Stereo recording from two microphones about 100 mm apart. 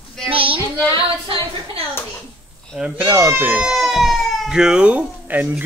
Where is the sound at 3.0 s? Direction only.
25° right (ahead or behind).